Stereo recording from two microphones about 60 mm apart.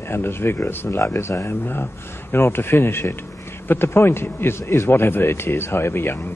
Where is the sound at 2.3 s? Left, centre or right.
Left.